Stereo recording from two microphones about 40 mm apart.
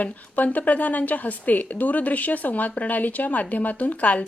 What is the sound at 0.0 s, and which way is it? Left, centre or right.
A woman's voice, left.